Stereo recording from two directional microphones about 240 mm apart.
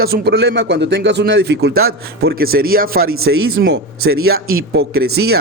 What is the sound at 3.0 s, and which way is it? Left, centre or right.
Speech, right.